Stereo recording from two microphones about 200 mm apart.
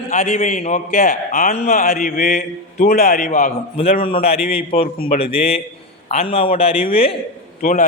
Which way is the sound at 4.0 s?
30° left (ahead or behind).